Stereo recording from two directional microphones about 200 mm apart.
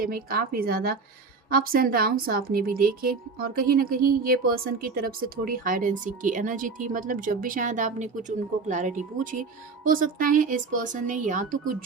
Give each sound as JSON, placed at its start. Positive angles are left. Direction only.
{"t": 0.0, "sound": "a woman's voice", "side_deg": -45}